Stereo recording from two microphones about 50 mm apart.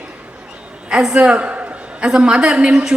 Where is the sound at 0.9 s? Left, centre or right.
Centre.